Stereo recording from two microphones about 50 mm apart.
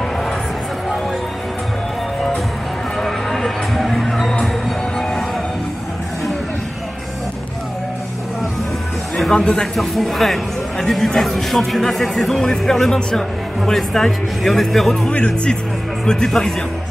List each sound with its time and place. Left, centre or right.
3.0 s music: centre
9.1 s speech: centre
9.8 s speech: centre
15.0 s speech: left
16.3 s speech: centre